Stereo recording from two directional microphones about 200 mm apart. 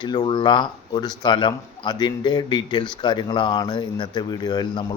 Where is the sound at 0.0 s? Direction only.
20° left (ahead or behind).